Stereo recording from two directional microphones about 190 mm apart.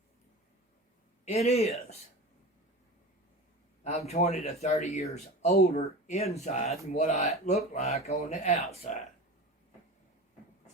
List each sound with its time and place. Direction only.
1.2 s speech: 35° left (ahead or behind)
3.8 s speech: 35° left (ahead or behind)